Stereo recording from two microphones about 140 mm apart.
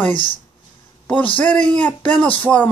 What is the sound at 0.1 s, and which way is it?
Speech, 35° left (ahead or behind).